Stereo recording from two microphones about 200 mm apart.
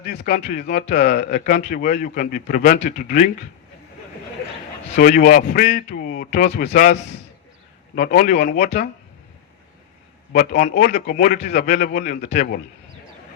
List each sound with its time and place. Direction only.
0.0 s a man's voice: 45° left (ahead or behind)
4.9 s a man's voice: 45° left (ahead or behind)
7.9 s a man's voice: 45° left (ahead or behind)
10.3 s a man's voice: 45° left (ahead or behind)